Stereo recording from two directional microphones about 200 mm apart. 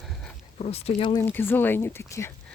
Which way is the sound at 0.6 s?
30° left (ahead or behind).